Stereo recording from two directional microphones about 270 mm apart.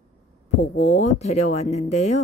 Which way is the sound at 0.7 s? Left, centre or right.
Left.